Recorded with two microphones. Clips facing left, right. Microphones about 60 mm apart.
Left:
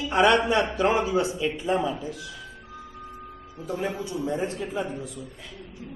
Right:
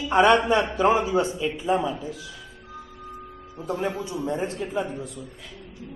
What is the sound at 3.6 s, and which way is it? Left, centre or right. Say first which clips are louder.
A man's voice: right 2 dB; centre.